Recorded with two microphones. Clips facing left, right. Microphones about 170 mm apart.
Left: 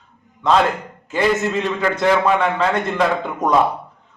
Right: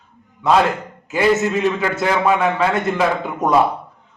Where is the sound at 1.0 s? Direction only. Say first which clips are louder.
Right 2 dB; 5° right (ahead or behind).